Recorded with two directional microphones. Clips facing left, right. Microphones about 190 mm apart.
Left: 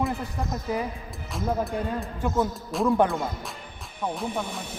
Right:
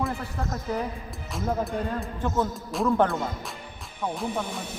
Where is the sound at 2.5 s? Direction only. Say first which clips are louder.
Left 1 dB; centre (ahead or behind).